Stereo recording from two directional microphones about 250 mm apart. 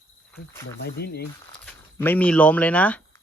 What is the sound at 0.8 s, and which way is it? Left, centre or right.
Speech, left.